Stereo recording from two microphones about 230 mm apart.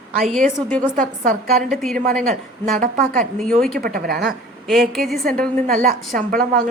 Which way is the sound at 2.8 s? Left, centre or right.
Right.